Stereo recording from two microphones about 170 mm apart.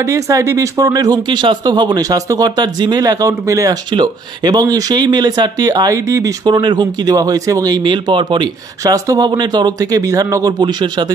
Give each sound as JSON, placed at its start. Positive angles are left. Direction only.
{"t": 0.0, "sound": "speech", "side_deg": -20}